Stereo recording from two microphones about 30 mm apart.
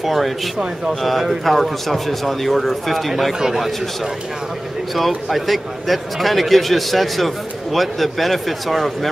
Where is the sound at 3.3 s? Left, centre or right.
Centre.